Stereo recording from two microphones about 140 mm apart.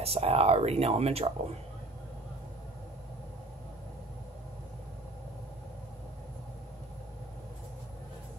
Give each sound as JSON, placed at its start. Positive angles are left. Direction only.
{"t": 0.0, "sound": "speech", "side_deg": -45}